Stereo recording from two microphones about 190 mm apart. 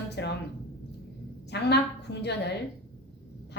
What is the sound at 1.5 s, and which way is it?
Speech, 65° left (ahead or behind).